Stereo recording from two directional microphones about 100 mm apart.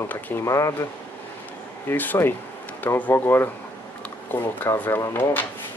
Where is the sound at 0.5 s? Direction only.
30° left (ahead or behind).